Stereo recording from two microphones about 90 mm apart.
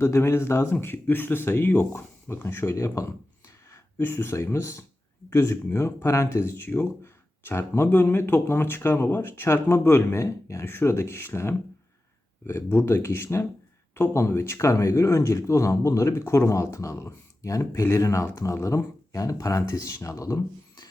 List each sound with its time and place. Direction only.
0.0 s speech: 30° left (ahead or behind)